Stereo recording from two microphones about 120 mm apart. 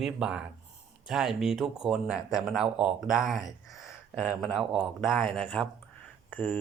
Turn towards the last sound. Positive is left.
turn(degrees=15)  # may be behind; listen again after turning